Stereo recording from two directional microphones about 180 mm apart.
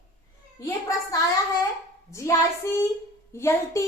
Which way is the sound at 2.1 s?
15° left (ahead or behind).